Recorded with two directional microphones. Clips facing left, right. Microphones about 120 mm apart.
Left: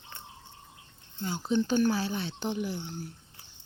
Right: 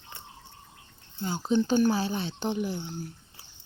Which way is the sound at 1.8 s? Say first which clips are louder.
Right 2 dB; 20° right (ahead or behind).